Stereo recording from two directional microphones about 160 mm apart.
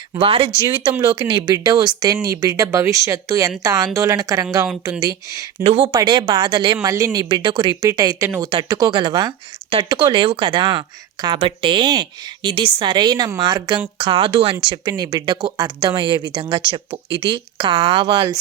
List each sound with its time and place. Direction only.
0.1 s speech: 35° right (ahead or behind)
5.6 s speech: 35° right (ahead or behind)